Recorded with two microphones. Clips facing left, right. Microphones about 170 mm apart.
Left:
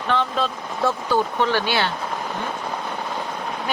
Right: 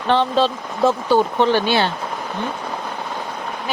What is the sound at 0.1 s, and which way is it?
Speech, 30° right (ahead or behind).